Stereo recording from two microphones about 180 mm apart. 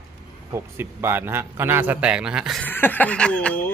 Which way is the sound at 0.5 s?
10° right (ahead or behind).